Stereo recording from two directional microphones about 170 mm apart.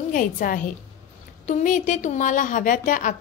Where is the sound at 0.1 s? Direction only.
55° left (ahead or behind).